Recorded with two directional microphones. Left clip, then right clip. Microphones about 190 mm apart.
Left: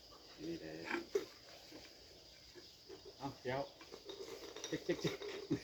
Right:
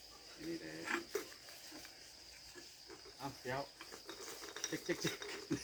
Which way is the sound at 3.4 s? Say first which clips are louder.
Left 2 dB; 15° left (ahead or behind).